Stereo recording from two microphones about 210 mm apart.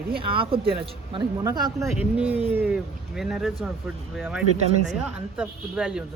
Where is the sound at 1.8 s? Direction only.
Centre (ahead or behind).